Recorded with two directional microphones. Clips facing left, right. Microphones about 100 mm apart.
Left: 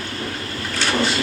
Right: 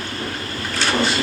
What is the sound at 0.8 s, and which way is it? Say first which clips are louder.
Vehicle: right 1 dB; 35° right (ahead or behind).